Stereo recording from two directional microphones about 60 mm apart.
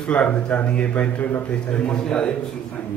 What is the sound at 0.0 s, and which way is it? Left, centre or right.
Speech, left.